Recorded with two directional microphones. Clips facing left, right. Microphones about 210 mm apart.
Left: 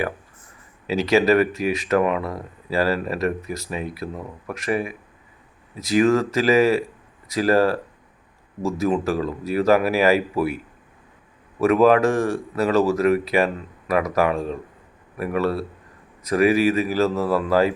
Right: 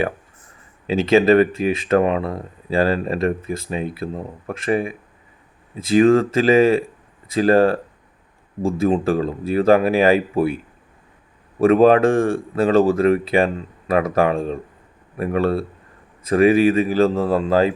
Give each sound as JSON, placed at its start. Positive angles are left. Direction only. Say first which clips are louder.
{"t": 0.9, "sound": "speech", "louder": "right 3 dB", "side_deg": -25}
{"t": 11.6, "sound": "speech", "louder": "right 3 dB", "side_deg": -30}